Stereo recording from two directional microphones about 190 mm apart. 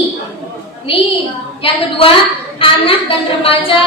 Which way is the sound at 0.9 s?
30° left (ahead or behind).